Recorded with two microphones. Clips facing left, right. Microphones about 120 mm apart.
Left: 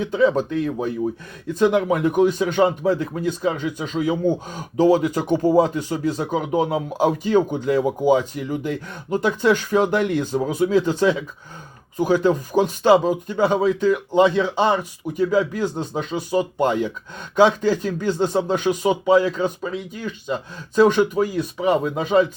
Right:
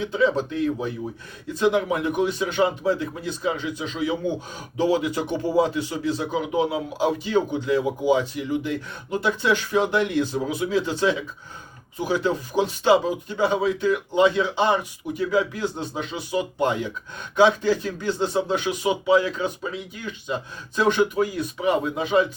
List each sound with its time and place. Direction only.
0.0 s speech: 45° left (ahead or behind)